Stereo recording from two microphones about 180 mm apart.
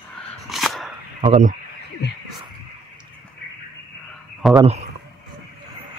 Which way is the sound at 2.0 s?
65° left (ahead or behind).